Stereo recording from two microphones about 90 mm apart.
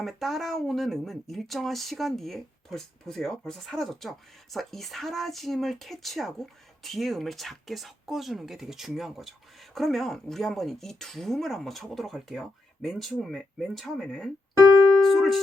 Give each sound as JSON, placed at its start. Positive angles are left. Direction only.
{"t": 0.0, "sound": "speech", "side_deg": 0}
{"t": 14.5, "sound": "keyboard", "side_deg": -35}
{"t": 15.0, "sound": "music", "side_deg": 0}